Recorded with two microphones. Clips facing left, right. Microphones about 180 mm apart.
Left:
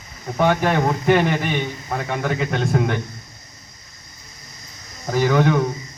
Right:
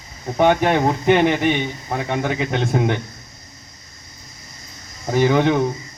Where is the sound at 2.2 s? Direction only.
20° right (ahead or behind).